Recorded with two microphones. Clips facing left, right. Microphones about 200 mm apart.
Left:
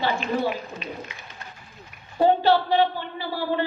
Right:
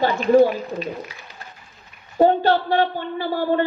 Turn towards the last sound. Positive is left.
turn(degrees=-45)  # may be behind; listen again after turning